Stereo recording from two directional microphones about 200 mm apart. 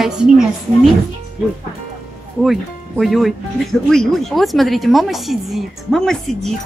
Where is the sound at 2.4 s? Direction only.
Centre (ahead or behind).